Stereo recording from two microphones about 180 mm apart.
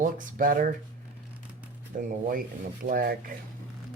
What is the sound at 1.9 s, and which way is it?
Speech, 45° right (ahead or behind).